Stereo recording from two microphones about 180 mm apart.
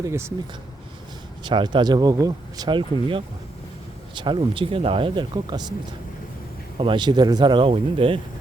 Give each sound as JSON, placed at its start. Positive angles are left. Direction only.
{"t": 0.0, "sound": "speech", "side_deg": -15}
{"t": 1.5, "sound": "speech", "side_deg": -25}
{"t": 6.7, "sound": "speech", "side_deg": -25}